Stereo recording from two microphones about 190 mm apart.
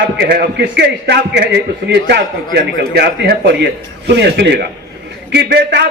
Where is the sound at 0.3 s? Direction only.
60° right (ahead or behind).